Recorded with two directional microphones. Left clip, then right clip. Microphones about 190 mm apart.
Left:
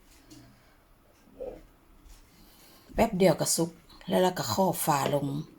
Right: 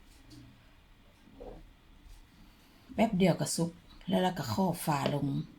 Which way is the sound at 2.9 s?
25° left (ahead or behind).